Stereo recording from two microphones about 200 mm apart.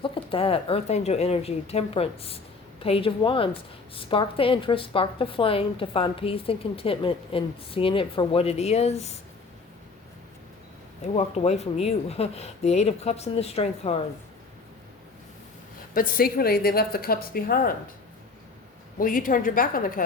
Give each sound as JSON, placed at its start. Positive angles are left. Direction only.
{"t": 0.0, "sound": "a woman's voice", "side_deg": 25}
{"t": 11.0, "sound": "speech", "side_deg": 30}
{"t": 16.0, "sound": "a woman's voice", "side_deg": 45}
{"t": 18.9, "sound": "a woman's voice", "side_deg": 45}